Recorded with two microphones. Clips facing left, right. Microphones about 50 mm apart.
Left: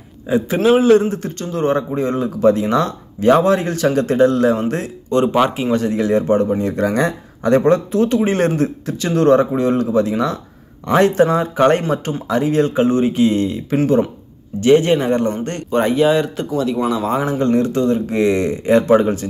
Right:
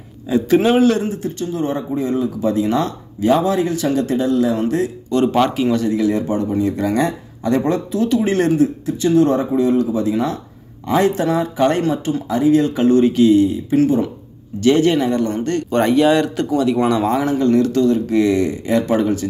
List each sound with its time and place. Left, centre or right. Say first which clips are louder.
0.3 s speech: left 1 dB; left
0.9 s speech: left 6 dB; left
1.4 s speech: left 5 dB; left
5.2 s speech: even; centre
5.6 s speech: right 1 dB; left
8.8 s speech: left 3 dB; left
13.3 s speech: right 5 dB; left
14.6 s speech: left 1 dB; left
15.7 s speech: even; centre
17.3 s speech: right 1 dB; left